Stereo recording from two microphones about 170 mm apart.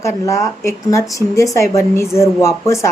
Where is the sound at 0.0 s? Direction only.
20° left (ahead or behind).